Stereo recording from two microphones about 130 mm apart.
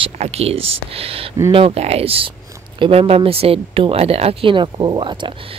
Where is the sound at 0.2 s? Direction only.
50° right (ahead or behind).